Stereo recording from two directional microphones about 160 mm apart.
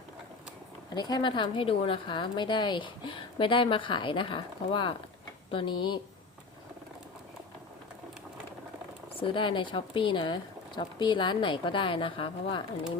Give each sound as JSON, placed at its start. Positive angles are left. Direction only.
{"t": 0.9, "sound": "a woman's voice", "side_deg": 25}
{"t": 9.2, "sound": "a woman's voice", "side_deg": 30}